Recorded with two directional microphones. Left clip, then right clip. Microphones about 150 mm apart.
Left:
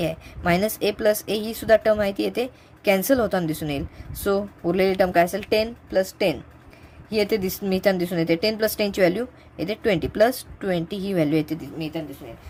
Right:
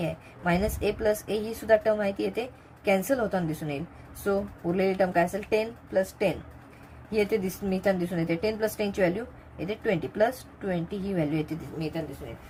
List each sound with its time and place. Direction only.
0.0 s a woman's voice: 55° left (ahead or behind)